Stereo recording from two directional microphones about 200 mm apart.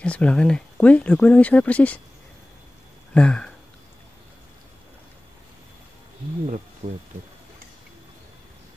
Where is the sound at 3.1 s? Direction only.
5° left (ahead or behind).